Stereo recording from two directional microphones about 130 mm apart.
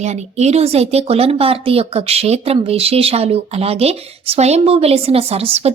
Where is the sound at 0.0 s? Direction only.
60° right (ahead or behind).